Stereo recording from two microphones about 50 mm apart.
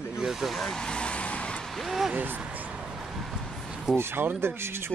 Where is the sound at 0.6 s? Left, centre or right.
Centre.